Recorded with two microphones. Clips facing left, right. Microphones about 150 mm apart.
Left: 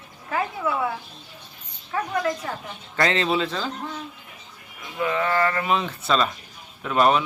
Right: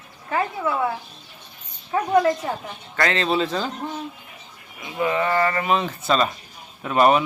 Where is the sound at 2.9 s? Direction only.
20° left (ahead or behind).